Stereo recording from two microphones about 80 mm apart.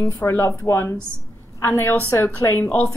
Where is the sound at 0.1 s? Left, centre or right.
Left.